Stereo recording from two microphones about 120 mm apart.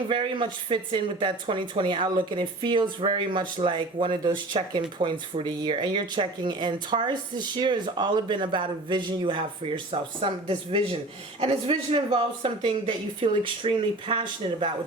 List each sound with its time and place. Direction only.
0.1 s a man's voice: 45° right (ahead or behind)